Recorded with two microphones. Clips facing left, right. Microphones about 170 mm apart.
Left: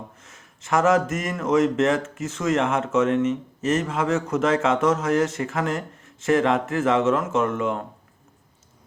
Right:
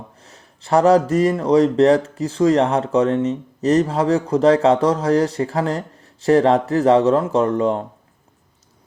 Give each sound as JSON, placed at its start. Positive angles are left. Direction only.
{"t": 0.2, "sound": "speech", "side_deg": -35}